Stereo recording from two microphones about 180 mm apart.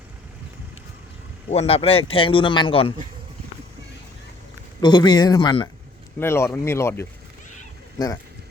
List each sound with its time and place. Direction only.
1.5 s speech: 35° left (ahead or behind)
4.8 s speech: 25° left (ahead or behind)
6.1 s speech: 15° left (ahead or behind)